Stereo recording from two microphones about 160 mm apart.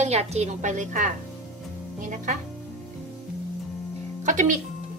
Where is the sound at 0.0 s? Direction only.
40° right (ahead or behind).